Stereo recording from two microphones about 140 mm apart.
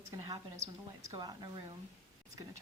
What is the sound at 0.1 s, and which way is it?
A woman's voice, 25° right (ahead or behind).